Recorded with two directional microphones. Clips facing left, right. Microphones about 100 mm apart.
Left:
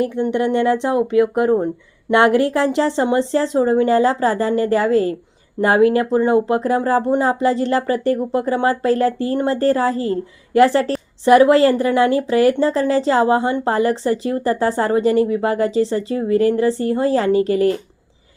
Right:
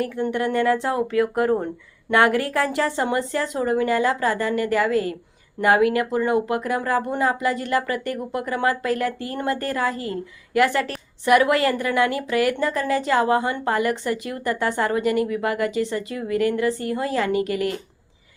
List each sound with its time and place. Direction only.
0.0 s a woman's voice: 20° left (ahead or behind)